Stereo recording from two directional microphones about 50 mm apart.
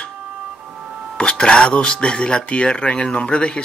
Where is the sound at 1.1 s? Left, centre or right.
Centre.